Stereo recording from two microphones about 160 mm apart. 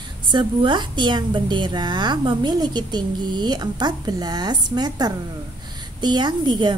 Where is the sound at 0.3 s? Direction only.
30° right (ahead or behind).